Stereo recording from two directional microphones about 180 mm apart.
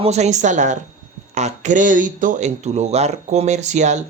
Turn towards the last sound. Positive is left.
turn(degrees=-40)  # may be behind; listen again after turning